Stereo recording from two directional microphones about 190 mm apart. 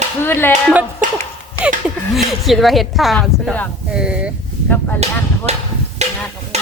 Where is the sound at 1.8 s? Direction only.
Centre (ahead or behind).